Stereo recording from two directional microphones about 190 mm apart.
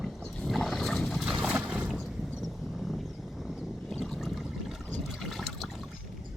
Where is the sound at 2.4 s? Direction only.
Centre (ahead or behind).